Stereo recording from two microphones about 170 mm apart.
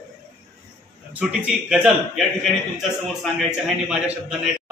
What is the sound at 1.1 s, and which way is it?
A man's voice, 5° right (ahead or behind).